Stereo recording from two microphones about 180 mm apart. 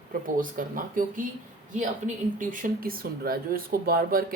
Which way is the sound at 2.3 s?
50° right (ahead or behind).